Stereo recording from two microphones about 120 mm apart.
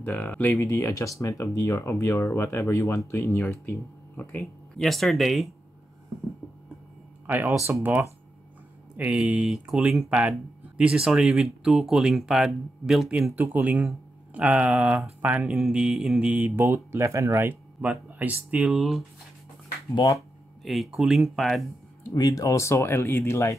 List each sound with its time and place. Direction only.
0.0 s speech: 15° left (ahead or behind)
0.6 s speech: 25° left (ahead or behind)
4.4 s speech: centre (ahead or behind)
7.2 s speech: 15° right (ahead or behind); by 13.3 s centre (ahead or behind)
13.3 s speech: 15° right (ahead or behind)
20.2 s speech: centre (ahead or behind)
22.1 s speech: 30° left (ahead or behind)